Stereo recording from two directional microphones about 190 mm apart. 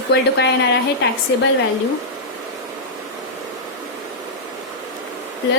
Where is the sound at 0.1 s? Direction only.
65° left (ahead or behind).